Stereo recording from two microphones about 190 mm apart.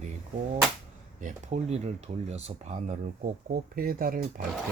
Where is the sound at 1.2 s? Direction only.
40° right (ahead or behind).